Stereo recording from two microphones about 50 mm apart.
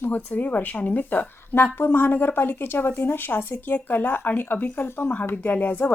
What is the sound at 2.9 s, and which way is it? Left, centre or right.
Speech, left.